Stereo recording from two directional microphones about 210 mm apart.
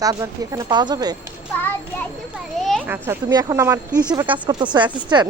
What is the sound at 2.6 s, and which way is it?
Children playing, centre (ahead or behind).